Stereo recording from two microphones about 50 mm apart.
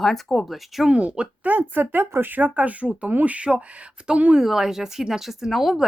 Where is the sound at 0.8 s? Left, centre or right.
Right.